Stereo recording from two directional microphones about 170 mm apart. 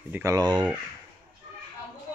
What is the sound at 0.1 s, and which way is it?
Speech, 20° right (ahead or behind).